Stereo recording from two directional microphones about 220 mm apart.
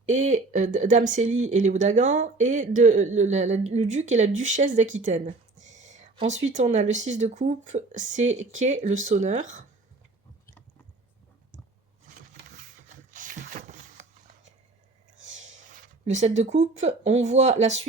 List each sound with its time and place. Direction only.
0.1 s speech: 35° right (ahead or behind)
13.1 s a sound: 35° right (ahead or behind)
16.0 s speech: 30° right (ahead or behind)